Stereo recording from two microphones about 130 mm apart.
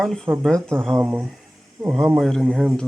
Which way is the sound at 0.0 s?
5° left (ahead or behind).